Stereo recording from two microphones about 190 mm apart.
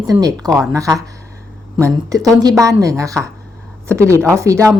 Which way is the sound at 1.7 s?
15° right (ahead or behind).